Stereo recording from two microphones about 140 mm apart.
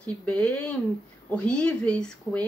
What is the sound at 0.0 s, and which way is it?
A woman's voice, 10° left (ahead or behind).